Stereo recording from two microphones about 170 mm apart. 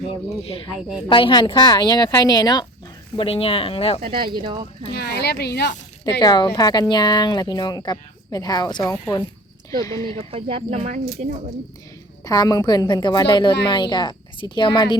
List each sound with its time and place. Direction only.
1.0 s speech: 30° left (ahead or behind)
3.2 s speech: 35° left (ahead or behind)
4.0 s speech: 30° right (ahead or behind)
4.9 s speech: 75° left (ahead or behind)
6.1 s speech: 25° left (ahead or behind)
10.2 s speech: 35° right (ahead or behind)
12.2 s speech: 20° left (ahead or behind)